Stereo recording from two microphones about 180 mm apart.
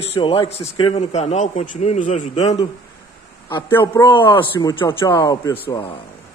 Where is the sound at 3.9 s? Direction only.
25° left (ahead or behind).